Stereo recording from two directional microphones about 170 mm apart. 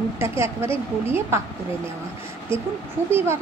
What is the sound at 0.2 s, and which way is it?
Speech, 15° right (ahead or behind).